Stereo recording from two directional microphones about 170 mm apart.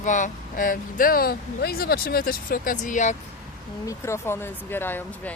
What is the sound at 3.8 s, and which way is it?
Speech, 15° left (ahead or behind).